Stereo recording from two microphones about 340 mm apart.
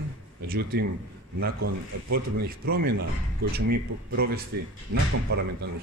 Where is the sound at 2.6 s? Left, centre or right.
Right.